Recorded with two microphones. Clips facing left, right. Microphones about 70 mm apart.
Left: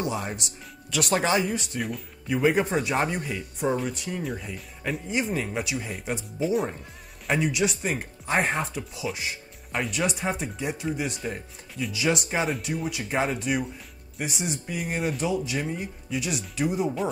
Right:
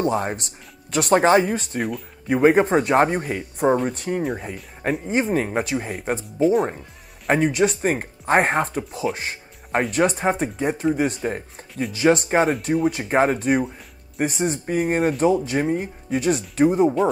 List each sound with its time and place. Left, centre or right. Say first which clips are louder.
0.0 s speech: right 7 dB; right
1.8 s speech: right 5 dB; centre
2.2 s speech: right 7 dB; right
4.2 s speech: right 6 dB; right